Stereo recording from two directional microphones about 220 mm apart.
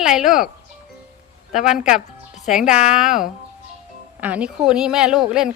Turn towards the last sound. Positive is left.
turn(degrees=0)  # may be behind; listen again after turning